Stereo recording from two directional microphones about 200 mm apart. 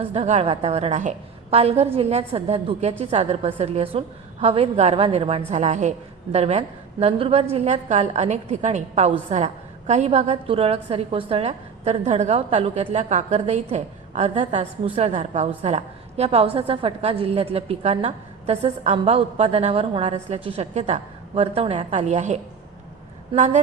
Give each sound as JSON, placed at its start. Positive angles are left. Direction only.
{"t": 0.0, "sound": "a woman's voice", "side_deg": -30}